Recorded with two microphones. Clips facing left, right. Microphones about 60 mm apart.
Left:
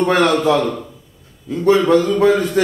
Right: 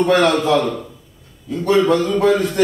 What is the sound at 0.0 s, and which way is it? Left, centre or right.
Speech, centre.